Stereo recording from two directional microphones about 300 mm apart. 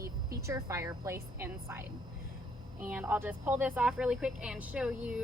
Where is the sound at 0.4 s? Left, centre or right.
Centre.